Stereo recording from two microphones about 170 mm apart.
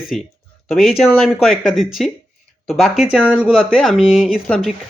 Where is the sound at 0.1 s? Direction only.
Centre (ahead or behind).